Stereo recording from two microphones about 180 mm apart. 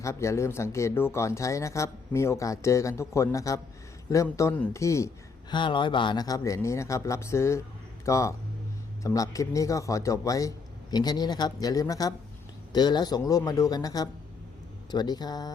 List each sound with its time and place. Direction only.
0.0 s speech: 15° left (ahead or behind)